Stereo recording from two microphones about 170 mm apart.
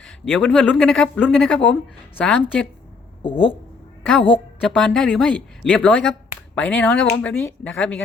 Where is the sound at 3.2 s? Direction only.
30° left (ahead or behind).